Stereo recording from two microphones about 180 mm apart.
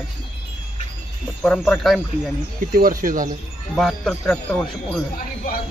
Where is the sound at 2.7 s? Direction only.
50° right (ahead or behind).